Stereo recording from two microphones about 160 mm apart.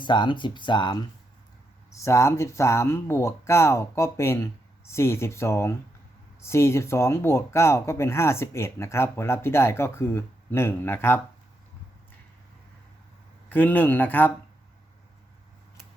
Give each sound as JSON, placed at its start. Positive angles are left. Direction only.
{"t": 0.0, "sound": "speech", "side_deg": 30}
{"t": 13.5, "sound": "speech", "side_deg": 10}